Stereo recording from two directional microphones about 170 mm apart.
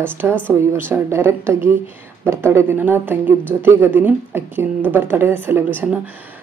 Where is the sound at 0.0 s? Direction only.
15° right (ahead or behind).